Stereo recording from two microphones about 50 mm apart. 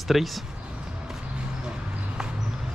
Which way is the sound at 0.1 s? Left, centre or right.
Centre.